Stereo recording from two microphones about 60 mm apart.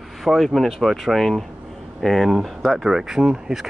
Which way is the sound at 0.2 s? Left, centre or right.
Centre.